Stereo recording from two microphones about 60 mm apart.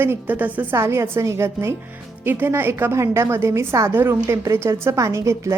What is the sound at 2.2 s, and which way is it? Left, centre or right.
A woman's voice, right.